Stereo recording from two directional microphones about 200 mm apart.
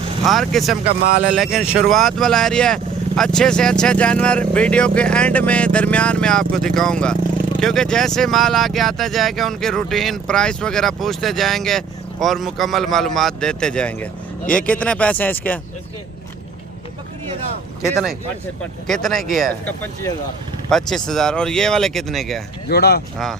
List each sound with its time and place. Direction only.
0.3 s speech: centre (ahead or behind)
17.8 s speech: centre (ahead or behind)
19.3 s speech: 45° right (ahead or behind)
19.6 s speech: 10° left (ahead or behind)
22.7 s speech: 50° left (ahead or behind)
23.1 s speech: centre (ahead or behind)